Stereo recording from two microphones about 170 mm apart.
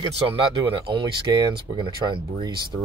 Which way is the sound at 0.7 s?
30° right (ahead or behind).